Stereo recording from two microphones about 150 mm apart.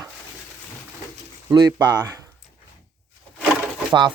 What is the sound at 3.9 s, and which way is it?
Speech, 30° right (ahead or behind).